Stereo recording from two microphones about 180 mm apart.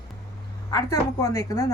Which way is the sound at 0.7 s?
20° left (ahead or behind).